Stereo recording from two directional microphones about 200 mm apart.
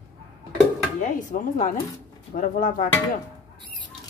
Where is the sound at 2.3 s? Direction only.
40° left (ahead or behind).